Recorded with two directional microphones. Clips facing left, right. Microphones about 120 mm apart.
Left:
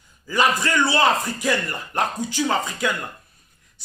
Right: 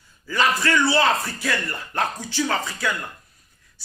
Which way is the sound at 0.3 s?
15° left (ahead or behind).